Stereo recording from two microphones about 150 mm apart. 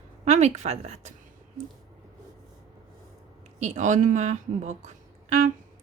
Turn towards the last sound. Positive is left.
turn(degrees=-50)  # may be behind; listen again after turning